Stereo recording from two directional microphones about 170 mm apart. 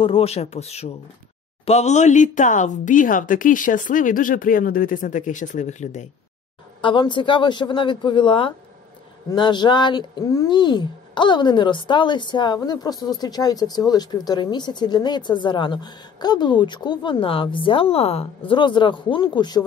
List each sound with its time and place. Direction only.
0.0 s a woman's voice: 35° left (ahead or behind)
6.8 s speech: 30° left (ahead or behind)